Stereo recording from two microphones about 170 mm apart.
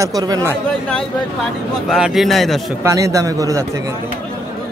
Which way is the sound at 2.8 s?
20° right (ahead or behind).